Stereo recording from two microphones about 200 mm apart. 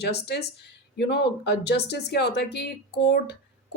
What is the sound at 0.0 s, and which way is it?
Speech, 55° left (ahead or behind).